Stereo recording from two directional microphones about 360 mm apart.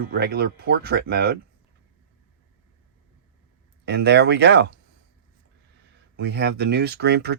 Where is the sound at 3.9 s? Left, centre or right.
Right.